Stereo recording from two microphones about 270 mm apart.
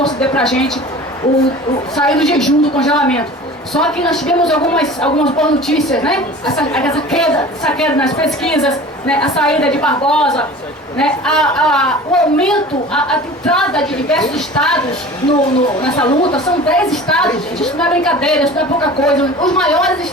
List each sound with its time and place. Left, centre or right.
0.0 s speech: centre
2.0 s a man's voice: centre
16.0 s a woman's voice: centre
16.6 s a man's voice: centre